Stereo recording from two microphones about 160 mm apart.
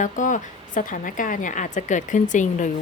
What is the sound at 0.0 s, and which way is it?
A woman's voice, 50° left (ahead or behind).